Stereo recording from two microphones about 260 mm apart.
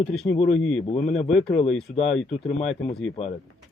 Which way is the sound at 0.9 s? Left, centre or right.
Left.